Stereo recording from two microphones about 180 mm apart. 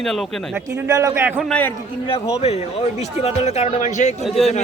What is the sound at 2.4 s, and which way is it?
A man's voice, 35° left (ahead or behind).